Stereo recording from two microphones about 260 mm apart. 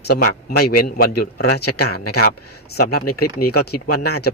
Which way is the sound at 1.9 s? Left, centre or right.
Left.